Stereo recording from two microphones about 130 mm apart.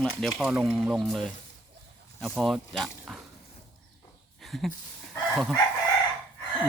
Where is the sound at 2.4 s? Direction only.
Centre (ahead or behind).